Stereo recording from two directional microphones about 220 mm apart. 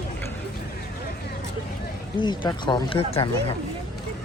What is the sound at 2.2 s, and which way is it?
Speech, 20° left (ahead or behind).